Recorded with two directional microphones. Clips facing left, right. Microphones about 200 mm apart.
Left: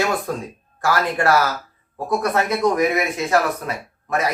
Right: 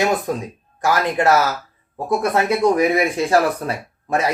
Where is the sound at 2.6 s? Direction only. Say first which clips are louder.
Right 3 dB; 30° right (ahead or behind).